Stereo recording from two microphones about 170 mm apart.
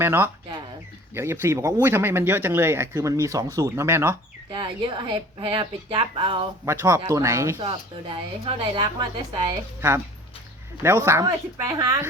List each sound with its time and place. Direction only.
0.0 s speech: 15° right (ahead or behind)
4.5 s speech: 30° right (ahead or behind)
6.7 s speech: 20° right (ahead or behind)
7.7 s speech: 30° right (ahead or behind)
10.8 s speech: 15° right (ahead or behind)